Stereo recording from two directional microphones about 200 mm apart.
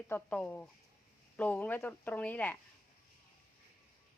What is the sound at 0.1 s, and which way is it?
Speech, 5° left (ahead or behind).